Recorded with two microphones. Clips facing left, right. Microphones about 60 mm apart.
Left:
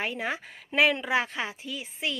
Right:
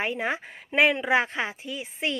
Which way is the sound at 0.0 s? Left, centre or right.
Right.